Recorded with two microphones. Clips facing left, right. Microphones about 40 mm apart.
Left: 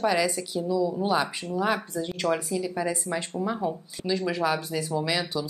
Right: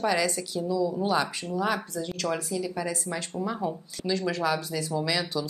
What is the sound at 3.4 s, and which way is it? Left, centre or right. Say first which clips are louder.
Speech: even; centre.